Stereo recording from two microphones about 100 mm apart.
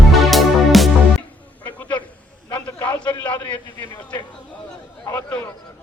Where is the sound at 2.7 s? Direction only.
20° left (ahead or behind).